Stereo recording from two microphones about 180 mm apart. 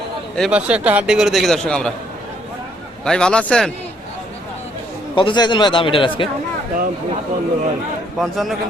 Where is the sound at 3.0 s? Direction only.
5° left (ahead or behind).